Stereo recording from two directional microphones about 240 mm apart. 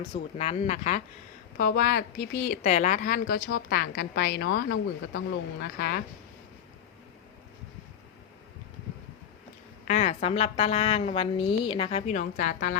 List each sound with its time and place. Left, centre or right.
0.3 s a woman's voice: left
9.8 s a woman's voice: left